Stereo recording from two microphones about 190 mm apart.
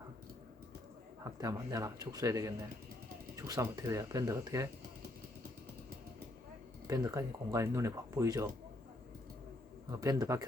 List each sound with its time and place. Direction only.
1.2 s speech: 15° right (ahead or behind)
6.8 s speech: 15° right (ahead or behind)
10.0 s speech: 15° right (ahead or behind)